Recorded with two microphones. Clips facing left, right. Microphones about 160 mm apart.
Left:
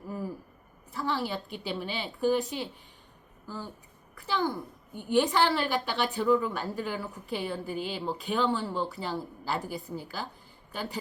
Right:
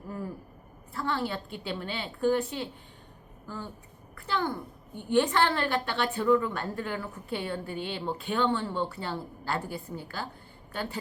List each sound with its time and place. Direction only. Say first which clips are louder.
0.9 s a woman's voice: even; 5° left (ahead or behind)
4.3 s a woman's voice: left 1 dB; 10° left (ahead or behind)